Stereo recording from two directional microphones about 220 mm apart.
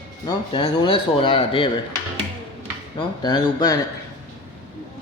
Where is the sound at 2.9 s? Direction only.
20° left (ahead or behind).